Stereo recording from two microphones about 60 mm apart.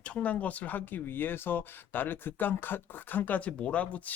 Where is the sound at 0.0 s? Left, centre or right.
Left.